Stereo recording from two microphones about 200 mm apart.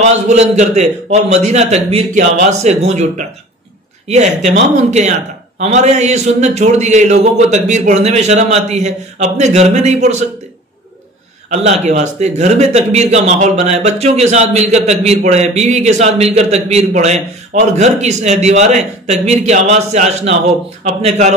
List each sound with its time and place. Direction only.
0.0 s speech: 35° right (ahead or behind)
11.5 s speech: 35° right (ahead or behind)